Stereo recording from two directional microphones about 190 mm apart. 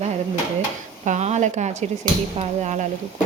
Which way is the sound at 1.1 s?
35° right (ahead or behind).